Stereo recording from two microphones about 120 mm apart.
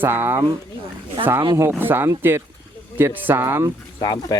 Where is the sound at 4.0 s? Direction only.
35° left (ahead or behind).